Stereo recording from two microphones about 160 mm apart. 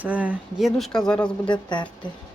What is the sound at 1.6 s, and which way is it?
Speech, 30° left (ahead or behind).